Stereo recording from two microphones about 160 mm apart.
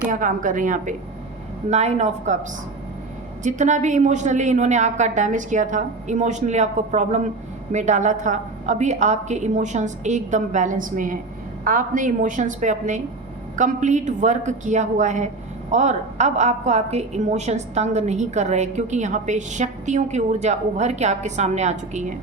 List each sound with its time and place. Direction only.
0.1 s a woman's voice: 55° right (ahead or behind)
1.7 s a woman's voice: 45° right (ahead or behind)
3.4 s a woman's voice: 50° right (ahead or behind)